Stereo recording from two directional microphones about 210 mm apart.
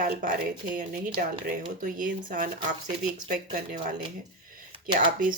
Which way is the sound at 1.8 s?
40° right (ahead or behind).